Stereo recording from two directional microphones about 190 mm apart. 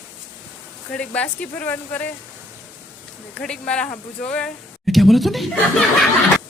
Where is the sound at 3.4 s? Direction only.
5° left (ahead or behind).